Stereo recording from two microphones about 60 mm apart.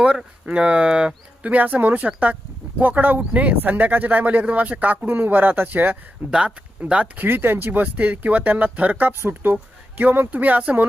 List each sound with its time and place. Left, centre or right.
0.0 s speech: centre; by 6.0 s right
6.3 s speech: centre
7.2 s speech: right